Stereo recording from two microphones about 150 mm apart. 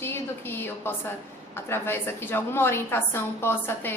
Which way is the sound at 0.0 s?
15° left (ahead or behind).